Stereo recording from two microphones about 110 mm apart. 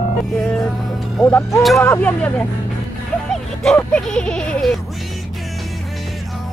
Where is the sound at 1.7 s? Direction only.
25° left (ahead or behind).